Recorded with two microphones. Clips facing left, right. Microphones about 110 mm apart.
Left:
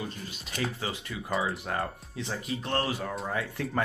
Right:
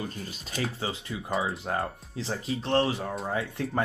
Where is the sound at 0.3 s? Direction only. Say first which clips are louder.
Right 1 dB; 30° right (ahead or behind).